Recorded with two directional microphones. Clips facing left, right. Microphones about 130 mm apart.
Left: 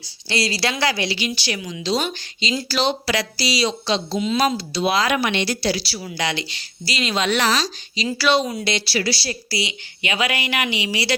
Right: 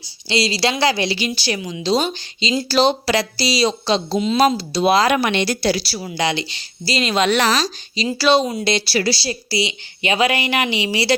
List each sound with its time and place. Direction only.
0.3 s a woman's voice: 20° right (ahead or behind); by 6.1 s 40° right (ahead or behind)
6.1 s a woman's voice: 25° right (ahead or behind)
7.3 s a woman's voice: 45° right (ahead or behind)
8.0 s a woman's voice: 30° right (ahead or behind)
9.1 s a woman's voice: 25° right (ahead or behind)